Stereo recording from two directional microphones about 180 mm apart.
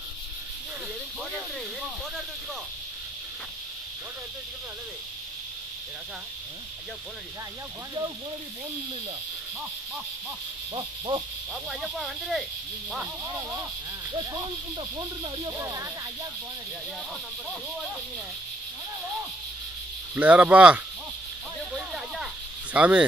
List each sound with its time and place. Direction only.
10.7 s speech: 25° right (ahead or behind)
11.7 s speech: centre (ahead or behind)
14.1 s speech: 20° right (ahead or behind)
20.2 s speech: 10° right (ahead or behind)
21.7 s a sound: centre (ahead or behind)